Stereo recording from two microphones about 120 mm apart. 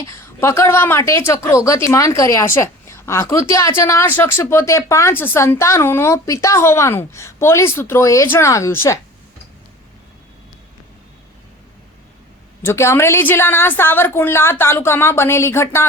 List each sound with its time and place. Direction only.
0.0 s a woman's voice: 25° left (ahead or behind)
12.6 s a woman's voice: 20° left (ahead or behind)